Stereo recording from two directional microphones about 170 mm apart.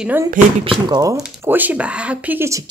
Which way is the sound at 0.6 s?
25° right (ahead or behind).